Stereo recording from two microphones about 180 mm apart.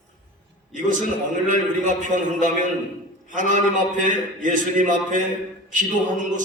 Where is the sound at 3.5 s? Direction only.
45° right (ahead or behind).